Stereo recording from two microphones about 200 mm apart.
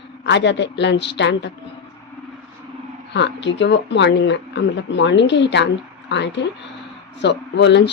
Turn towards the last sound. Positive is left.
turn(degrees=60)  # may be behind; listen again after turning